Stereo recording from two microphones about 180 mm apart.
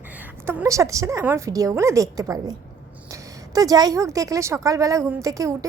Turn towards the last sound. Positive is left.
turn(degrees=-20)  # may be behind; listen again after turning